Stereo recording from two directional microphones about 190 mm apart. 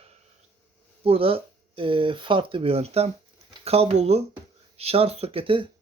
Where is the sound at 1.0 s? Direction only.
30° right (ahead or behind).